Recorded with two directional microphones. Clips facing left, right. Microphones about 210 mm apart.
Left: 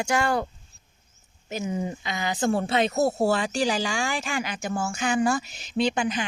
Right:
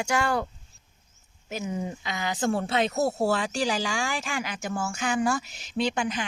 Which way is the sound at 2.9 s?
15° left (ahead or behind).